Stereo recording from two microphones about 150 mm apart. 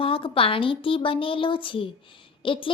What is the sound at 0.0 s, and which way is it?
Speech, 35° left (ahead or behind).